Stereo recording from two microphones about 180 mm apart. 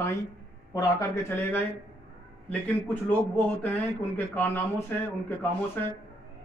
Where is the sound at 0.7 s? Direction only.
15° left (ahead or behind).